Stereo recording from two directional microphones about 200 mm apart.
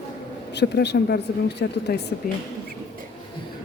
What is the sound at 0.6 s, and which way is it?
Speech, 55° left (ahead or behind).